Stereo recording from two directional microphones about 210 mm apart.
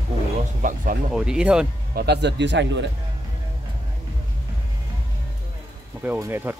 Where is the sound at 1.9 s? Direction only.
50° right (ahead or behind).